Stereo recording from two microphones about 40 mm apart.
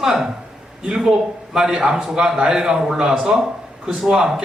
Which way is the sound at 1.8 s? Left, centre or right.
Centre.